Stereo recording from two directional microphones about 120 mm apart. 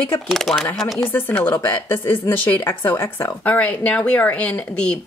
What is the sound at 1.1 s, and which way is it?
Speech, 15° left (ahead or behind).